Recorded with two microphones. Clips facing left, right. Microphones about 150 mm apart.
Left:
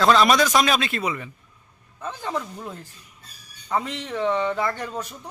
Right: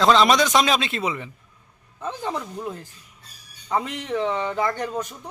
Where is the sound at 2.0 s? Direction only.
15° right (ahead or behind).